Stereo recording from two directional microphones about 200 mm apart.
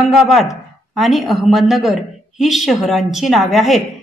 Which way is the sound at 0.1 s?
Centre (ahead or behind).